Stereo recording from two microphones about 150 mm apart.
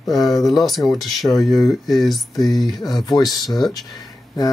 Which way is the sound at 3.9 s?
25° left (ahead or behind).